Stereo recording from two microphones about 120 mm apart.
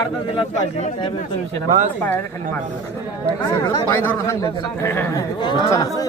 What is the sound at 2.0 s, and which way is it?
Speech, 15° left (ahead or behind).